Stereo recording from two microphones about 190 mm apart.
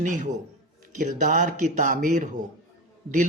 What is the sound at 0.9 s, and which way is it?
Speech, 40° right (ahead or behind).